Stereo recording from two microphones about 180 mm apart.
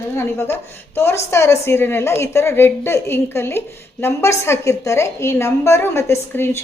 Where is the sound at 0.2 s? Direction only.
15° left (ahead or behind).